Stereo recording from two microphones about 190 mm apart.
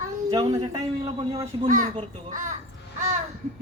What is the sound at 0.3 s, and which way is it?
Speech, 25° right (ahead or behind).